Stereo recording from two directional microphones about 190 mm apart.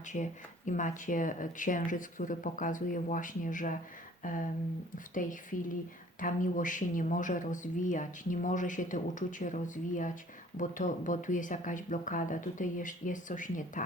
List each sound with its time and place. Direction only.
0.1 s speech: 40° left (ahead or behind)
4.2 s a sound: 45° left (ahead or behind)
5.1 s speech: 45° left (ahead or behind)